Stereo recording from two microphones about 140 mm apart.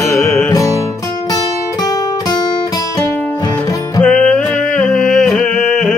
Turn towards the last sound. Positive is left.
turn(degrees=5)  # may be behind; listen again after turning